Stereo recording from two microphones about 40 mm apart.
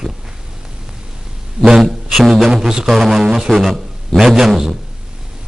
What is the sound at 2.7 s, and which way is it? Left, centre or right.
Speech, centre.